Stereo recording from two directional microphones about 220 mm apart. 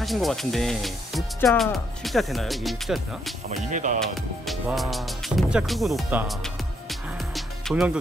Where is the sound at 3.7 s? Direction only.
35° right (ahead or behind).